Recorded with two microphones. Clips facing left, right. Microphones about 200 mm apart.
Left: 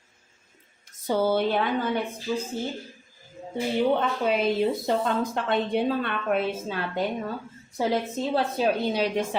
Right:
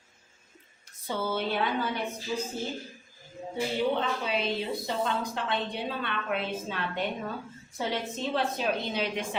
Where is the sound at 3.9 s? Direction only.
50° left (ahead or behind).